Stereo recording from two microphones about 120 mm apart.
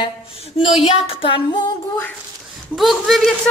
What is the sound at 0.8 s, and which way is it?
Child singing, 55° left (ahead or behind).